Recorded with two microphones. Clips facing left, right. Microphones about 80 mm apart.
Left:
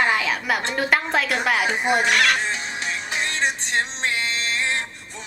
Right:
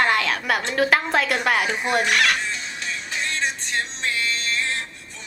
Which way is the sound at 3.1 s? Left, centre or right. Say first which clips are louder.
Left 2 dB; left.